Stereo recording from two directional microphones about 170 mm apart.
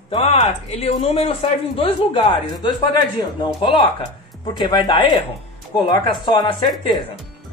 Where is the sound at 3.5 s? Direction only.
30° left (ahead or behind).